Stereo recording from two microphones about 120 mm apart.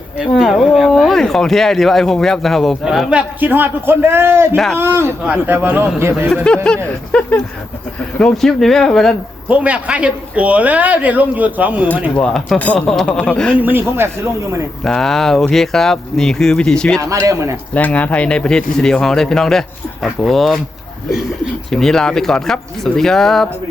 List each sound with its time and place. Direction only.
0.2 s speech: centre (ahead or behind); by 4.4 s 20° right (ahead or behind)
4.5 s speech: centre (ahead or behind)
4.8 s speech: 20° right (ahead or behind)
5.2 s a man's voice: 10° right (ahead or behind)
6.0 s speech: 20° right (ahead or behind)
6.3 s speech: 10° left (ahead or behind)
9.5 s a man's voice: 10° right (ahead or behind)
12.1 s speech: 5° left (ahead or behind)
13.6 s a man's voice: 15° right (ahead or behind)
14.8 s speech: 5° left (ahead or behind)
17.0 s speech: 25° right (ahead or behind)
17.7 s speech: 15° left (ahead or behind)
21.7 s speech: 5° left (ahead or behind)